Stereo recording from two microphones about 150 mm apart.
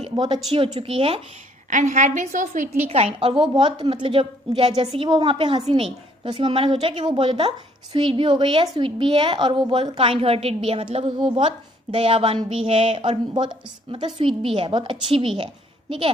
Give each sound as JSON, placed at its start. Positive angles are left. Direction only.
{"t": 0.0, "sound": "a woman's voice", "side_deg": -30}
{"t": 1.7, "sound": "a woman's voice", "side_deg": -55}